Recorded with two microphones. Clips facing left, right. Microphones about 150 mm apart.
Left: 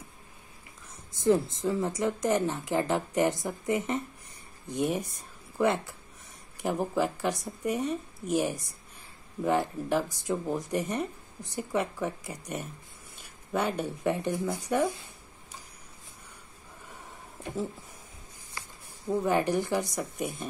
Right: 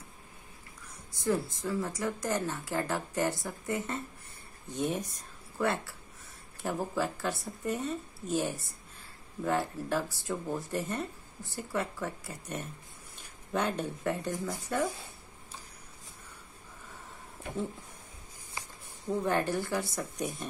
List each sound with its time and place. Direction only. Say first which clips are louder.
1.1 s speech: left 6 dB; 20° left (ahead or behind)
19.0 s speech: left 3 dB; 10° left (ahead or behind)